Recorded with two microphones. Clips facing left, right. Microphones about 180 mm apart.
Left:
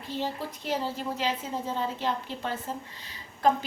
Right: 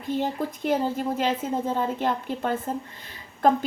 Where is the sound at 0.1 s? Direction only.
50° right (ahead or behind).